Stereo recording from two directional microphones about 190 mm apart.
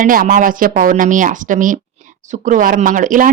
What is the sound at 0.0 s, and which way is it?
Speech, 45° right (ahead or behind).